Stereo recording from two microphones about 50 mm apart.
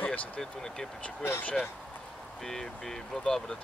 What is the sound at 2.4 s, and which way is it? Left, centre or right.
Speech, centre.